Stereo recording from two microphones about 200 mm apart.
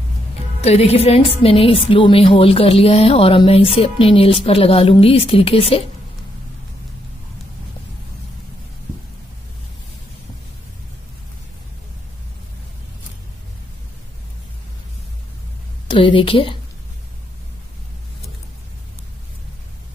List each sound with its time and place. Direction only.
0.6 s a woman's voice: 30° left (ahead or behind)
15.9 s a woman's voice: 25° left (ahead or behind)